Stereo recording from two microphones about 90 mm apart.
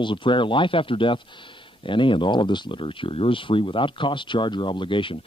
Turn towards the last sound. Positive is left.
turn(degrees=70)  # may be behind; listen again after turning